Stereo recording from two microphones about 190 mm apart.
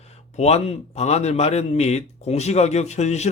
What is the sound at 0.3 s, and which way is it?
A man's voice, 35° left (ahead or behind).